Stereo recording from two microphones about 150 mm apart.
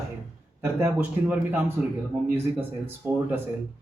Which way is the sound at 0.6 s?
15° right (ahead or behind).